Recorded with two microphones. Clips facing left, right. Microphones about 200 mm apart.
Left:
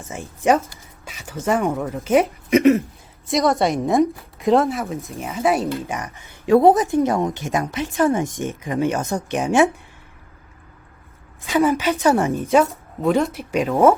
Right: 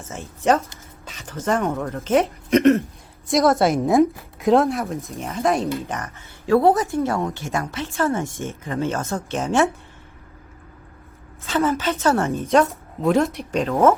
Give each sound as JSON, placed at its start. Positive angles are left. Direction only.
{"t": 0.0, "sound": "a woman's voice", "side_deg": 10}
{"t": 6.0, "sound": "a woman's voice", "side_deg": 15}
{"t": 11.4, "sound": "a woman's voice", "side_deg": 10}
{"t": 12.5, "sound": "a woman's voice", "side_deg": 0}